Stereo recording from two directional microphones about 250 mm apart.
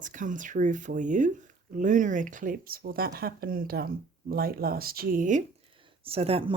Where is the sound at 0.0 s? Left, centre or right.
Right.